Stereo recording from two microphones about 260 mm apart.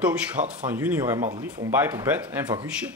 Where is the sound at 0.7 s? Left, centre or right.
Centre.